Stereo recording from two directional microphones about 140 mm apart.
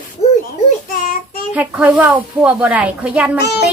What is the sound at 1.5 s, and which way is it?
Speech, 10° right (ahead or behind).